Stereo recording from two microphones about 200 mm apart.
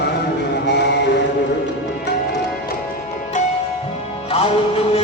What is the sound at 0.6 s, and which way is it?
Mantra, 60° left (ahead or behind).